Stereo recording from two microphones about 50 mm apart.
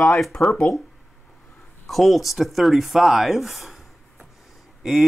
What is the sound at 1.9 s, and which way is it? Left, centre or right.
Speech, centre.